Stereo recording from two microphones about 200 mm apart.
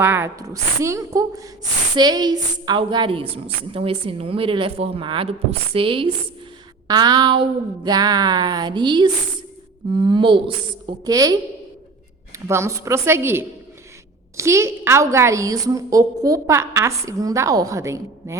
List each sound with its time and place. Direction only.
0.0 s a woman's voice: 10° right (ahead or behind)
12.5 s a woman's voice: 15° right (ahead or behind)